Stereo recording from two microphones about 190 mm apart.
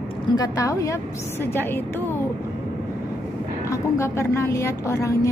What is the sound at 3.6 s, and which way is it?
A woman's voice, 15° left (ahead or behind).